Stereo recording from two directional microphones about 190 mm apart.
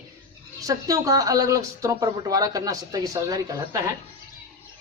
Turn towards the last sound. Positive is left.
turn(degrees=-15)  # may be behind; listen again after turning